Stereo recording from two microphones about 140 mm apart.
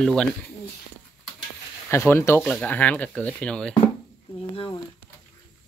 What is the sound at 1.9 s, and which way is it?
Speech, 20° left (ahead or behind).